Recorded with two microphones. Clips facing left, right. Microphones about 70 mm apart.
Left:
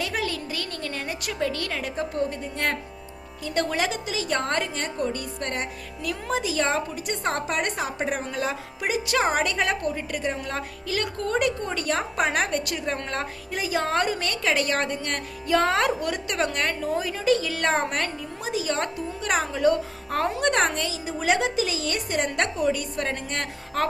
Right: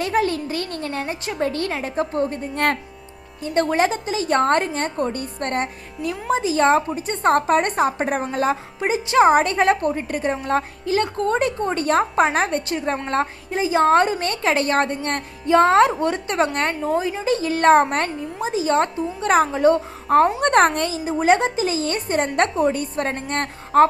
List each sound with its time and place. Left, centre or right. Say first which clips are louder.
0.0 s speech: right 8 dB; right
3.4 s a woman's voice: right 6 dB; right
6.1 s a woman's voice: right 6 dB; right
20.4 s a woman's voice: right 7 dB; right
21.0 s a woman's voice: right 7 dB; right